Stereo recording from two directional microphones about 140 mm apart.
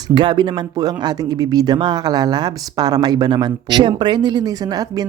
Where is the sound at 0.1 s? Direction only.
35° right (ahead or behind).